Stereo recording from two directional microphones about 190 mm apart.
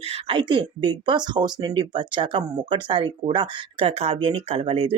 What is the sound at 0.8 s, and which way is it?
Speech, 25° right (ahead or behind).